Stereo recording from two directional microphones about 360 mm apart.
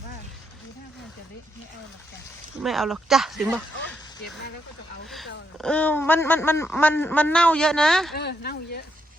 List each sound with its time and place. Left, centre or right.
2.6 s speech: centre
5.5 s speech: centre
8.1 s speech: left